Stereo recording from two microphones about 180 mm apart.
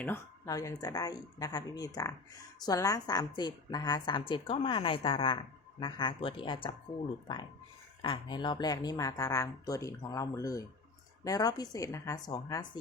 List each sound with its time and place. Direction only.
0.0 s a woman's voice: 15° left (ahead or behind)
8.0 s a woman's voice: 25° left (ahead or behind)